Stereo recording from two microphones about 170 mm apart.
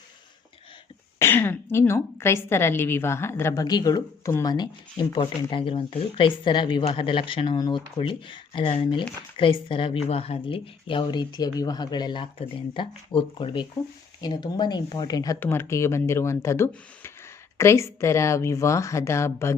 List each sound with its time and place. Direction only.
1.2 s a woman's voice: 15° left (ahead or behind)